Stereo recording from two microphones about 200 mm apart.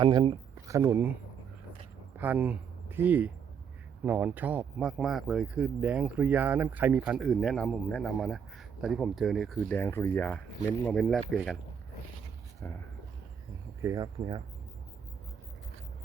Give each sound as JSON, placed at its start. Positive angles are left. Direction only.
{"t": 0.0, "sound": "speech", "side_deg": -20}
{"t": 2.1, "sound": "speech", "side_deg": -10}
{"t": 12.6, "sound": "speech", "side_deg": 15}
{"t": 13.8, "sound": "speech", "side_deg": -20}